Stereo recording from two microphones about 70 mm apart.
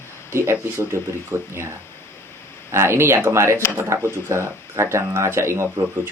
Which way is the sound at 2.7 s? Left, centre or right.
Right.